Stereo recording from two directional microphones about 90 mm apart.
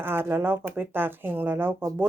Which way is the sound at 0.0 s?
25° right (ahead or behind).